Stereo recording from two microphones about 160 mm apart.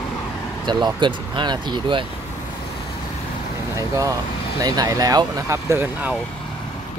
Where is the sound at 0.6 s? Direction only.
30° right (ahead or behind).